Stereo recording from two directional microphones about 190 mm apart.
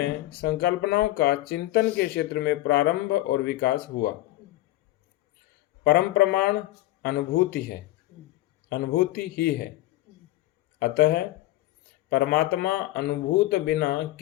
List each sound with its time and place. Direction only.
0.4 s speech: 55° left (ahead or behind)
5.8 s speech: 55° left (ahead or behind)
8.7 s speech: 55° left (ahead or behind)
10.8 s speech: 55° left (ahead or behind)